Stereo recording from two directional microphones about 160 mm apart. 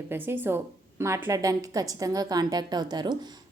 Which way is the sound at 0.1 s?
15° right (ahead or behind).